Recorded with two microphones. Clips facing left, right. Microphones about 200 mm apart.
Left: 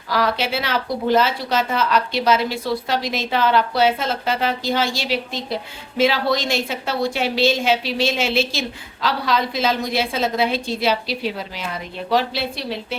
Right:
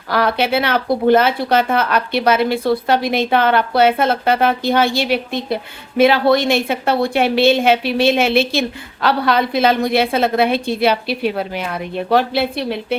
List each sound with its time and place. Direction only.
0.1 s a woman's voice: 60° right (ahead or behind)